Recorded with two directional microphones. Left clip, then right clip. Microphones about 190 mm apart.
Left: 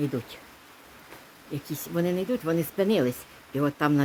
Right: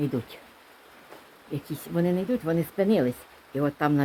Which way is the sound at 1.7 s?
Centre (ahead or behind).